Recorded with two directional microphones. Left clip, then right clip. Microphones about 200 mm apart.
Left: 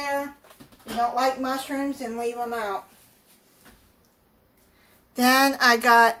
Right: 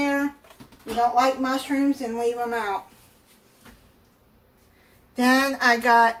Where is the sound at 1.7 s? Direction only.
25° left (ahead or behind).